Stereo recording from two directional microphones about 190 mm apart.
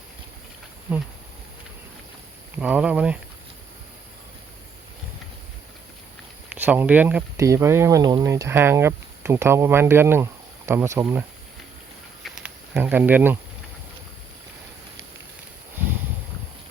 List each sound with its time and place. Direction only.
2.6 s speech: 5° right (ahead or behind)
6.5 s speech: 10° right (ahead or behind)
12.2 s a sound: 5° right (ahead or behind)